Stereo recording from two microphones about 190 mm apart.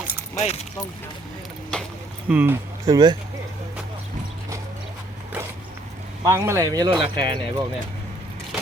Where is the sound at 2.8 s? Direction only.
20° right (ahead or behind).